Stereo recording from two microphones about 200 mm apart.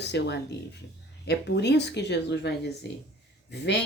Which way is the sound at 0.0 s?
60° left (ahead or behind).